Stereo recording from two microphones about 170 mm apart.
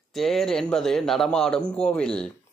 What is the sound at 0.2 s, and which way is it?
A man's voice, centre (ahead or behind).